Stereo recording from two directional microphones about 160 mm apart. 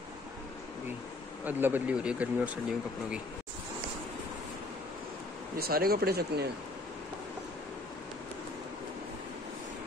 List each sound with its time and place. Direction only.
1.4 s speech: 10° right (ahead or behind)
5.6 s speech: 70° right (ahead or behind)